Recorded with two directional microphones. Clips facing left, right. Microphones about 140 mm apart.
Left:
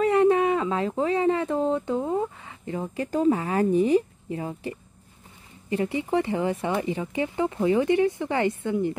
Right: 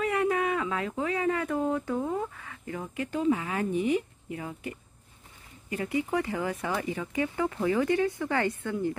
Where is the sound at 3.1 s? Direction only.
40° left (ahead or behind).